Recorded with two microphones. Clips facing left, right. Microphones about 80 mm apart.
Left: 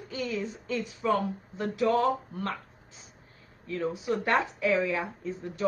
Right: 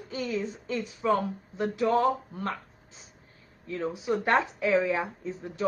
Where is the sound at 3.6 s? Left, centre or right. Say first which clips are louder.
Even; right.